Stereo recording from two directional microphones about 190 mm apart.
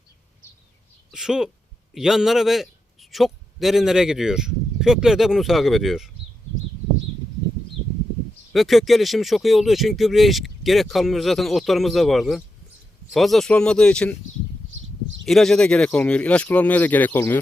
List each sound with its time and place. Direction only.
1.1 s a man's voice: centre (ahead or behind)
8.5 s speech: centre (ahead or behind)
14.7 s a sound: 85° right
15.2 s speech: centre (ahead or behind)